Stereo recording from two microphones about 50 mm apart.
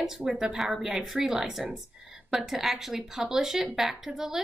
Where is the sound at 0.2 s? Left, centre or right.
Centre.